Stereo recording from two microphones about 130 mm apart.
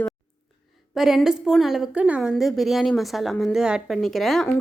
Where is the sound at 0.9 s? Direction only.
5° right (ahead or behind).